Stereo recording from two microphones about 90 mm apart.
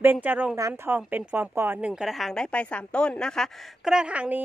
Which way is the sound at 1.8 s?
10° right (ahead or behind).